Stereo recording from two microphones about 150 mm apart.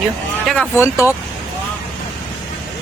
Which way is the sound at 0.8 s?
20° left (ahead or behind).